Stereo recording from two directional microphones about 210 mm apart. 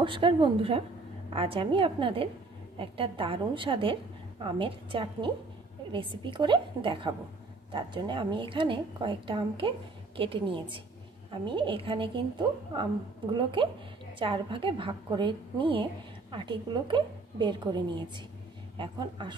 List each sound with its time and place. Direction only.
0.0 s a woman's voice: 25° right (ahead or behind)